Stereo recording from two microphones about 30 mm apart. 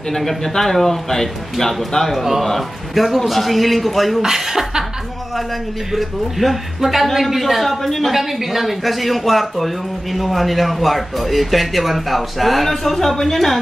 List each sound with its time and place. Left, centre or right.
0.1 s a man's voice: centre
4.2 s speech: centre
5.9 s a man's voice: centre
8.1 s a man's voice: centre